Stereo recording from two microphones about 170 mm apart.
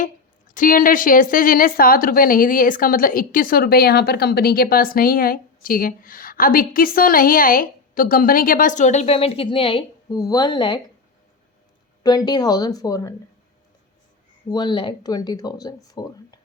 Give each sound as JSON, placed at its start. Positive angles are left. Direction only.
{"t": 0.0, "sound": "a woman's voice", "side_deg": 50}
{"t": 12.0, "sound": "speech", "side_deg": 25}
{"t": 14.5, "sound": "speech", "side_deg": 25}